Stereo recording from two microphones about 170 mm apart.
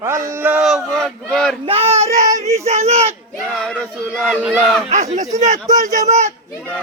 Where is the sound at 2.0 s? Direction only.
20° right (ahead or behind).